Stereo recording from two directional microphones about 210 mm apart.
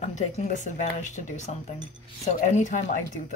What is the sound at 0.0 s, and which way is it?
Speech, 35° left (ahead or behind).